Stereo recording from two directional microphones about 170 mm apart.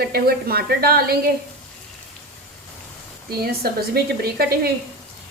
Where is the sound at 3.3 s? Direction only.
65° right (ahead or behind).